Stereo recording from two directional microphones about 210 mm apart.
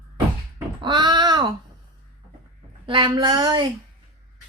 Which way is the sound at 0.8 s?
20° right (ahead or behind).